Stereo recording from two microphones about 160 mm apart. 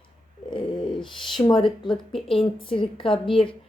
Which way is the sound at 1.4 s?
30° left (ahead or behind).